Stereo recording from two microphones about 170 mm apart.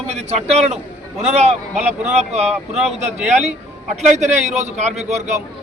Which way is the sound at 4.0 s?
40° right (ahead or behind).